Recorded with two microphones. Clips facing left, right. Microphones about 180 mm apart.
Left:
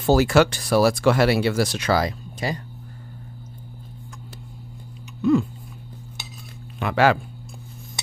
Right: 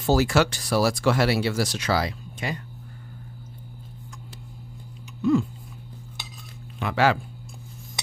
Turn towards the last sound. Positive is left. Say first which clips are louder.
# left 3 dB
turn(degrees=60)  # may be behind; listen again after turning